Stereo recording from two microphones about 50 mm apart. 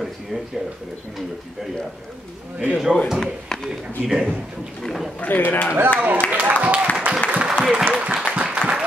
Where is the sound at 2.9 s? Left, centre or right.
Centre.